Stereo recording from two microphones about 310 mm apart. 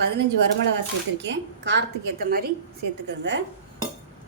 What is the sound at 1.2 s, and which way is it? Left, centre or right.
A woman's voice, right.